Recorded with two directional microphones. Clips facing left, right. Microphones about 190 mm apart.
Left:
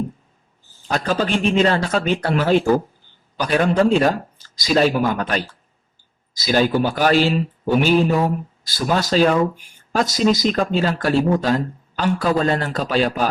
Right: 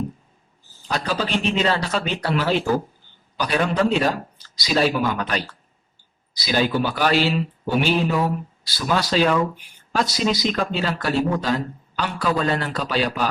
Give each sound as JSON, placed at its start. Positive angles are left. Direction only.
{"t": 0.9, "sound": "speech", "side_deg": 50}
{"t": 6.3, "sound": "speech", "side_deg": 45}